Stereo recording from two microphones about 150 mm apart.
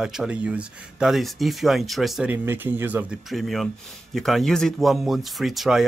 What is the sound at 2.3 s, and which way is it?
Speech, 15° right (ahead or behind).